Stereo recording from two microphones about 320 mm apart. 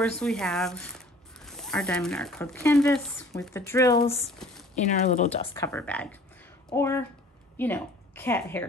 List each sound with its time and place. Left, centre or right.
0.2 s speech: centre
5.5 s a woman's voice: centre